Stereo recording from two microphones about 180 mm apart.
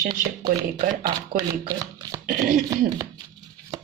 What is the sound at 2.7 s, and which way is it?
Speech, 20° right (ahead or behind).